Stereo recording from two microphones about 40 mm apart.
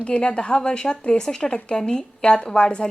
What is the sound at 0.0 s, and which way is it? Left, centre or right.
A woman's voice, left.